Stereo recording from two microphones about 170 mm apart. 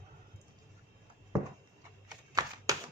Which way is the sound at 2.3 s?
20° right (ahead or behind).